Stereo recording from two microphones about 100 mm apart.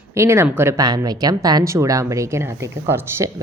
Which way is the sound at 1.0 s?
40° right (ahead or behind).